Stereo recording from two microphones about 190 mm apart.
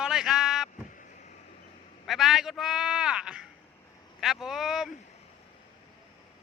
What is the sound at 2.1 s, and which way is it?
Speech, centre (ahead or behind).